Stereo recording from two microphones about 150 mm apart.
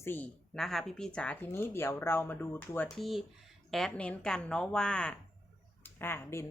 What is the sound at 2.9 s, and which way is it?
A woman's voice, centre (ahead or behind).